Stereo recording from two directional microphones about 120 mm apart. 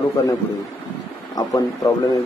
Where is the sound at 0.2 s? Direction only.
30° left (ahead or behind).